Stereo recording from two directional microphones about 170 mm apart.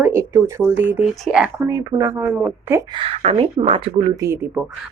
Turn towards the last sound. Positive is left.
turn(degrees=-10)  # may be behind; listen again after turning